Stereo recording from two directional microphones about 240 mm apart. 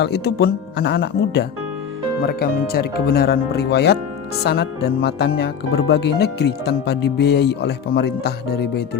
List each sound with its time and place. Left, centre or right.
0.0 s speech: left